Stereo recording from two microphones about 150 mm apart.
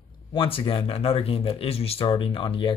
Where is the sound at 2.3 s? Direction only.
35° left (ahead or behind).